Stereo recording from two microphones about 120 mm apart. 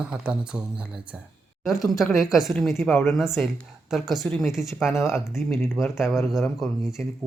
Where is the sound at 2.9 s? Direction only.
15° left (ahead or behind).